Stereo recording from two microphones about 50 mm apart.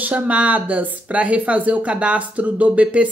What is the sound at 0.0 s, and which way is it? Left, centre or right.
Speech, right.